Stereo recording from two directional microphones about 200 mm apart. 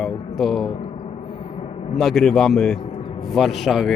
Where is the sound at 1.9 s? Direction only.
Centre (ahead or behind).